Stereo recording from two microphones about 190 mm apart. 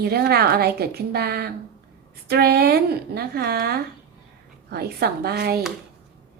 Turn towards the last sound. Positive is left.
turn(degrees=-55)  # may be behind; listen again after turning